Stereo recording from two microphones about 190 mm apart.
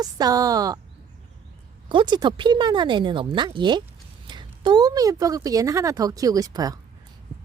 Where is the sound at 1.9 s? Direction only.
25° right (ahead or behind).